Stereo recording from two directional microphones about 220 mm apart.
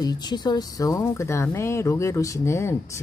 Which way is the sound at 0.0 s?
20° left (ahead or behind).